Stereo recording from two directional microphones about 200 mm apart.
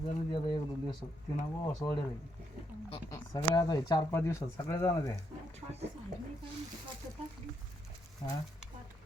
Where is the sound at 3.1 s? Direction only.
15° left (ahead or behind).